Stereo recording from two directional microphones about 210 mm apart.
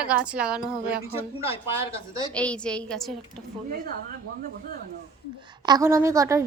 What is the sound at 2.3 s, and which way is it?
Speech, 5° left (ahead or behind).